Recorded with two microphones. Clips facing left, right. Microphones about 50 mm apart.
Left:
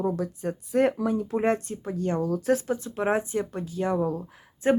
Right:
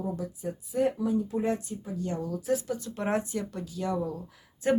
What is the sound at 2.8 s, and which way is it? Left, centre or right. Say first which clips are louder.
Speech: left 4 dB; left.